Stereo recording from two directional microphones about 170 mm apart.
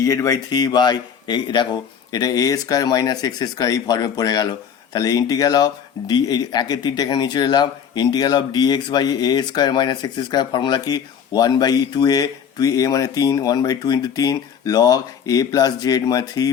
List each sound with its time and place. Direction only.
0.0 s speech: 20° left (ahead or behind)